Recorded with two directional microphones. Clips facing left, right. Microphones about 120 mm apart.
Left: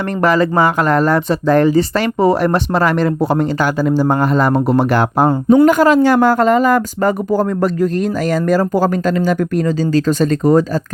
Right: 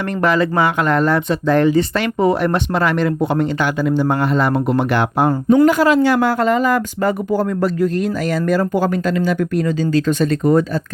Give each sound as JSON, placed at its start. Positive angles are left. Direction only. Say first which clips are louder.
{"t": 0.2, "sound": "speech", "louder": "left 3 dB", "side_deg": 40}